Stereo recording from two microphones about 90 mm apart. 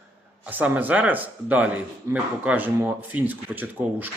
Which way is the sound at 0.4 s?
15° right (ahead or behind).